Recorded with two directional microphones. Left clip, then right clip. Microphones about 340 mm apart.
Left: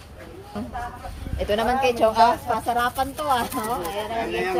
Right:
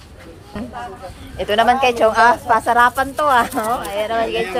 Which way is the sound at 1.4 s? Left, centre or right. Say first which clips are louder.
Right 7 dB; centre.